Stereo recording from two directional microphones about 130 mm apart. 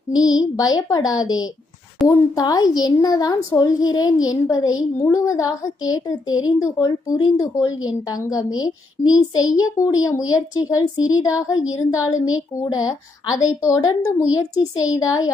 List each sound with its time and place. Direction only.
0.2 s a woman's voice: 30° left (ahead or behind)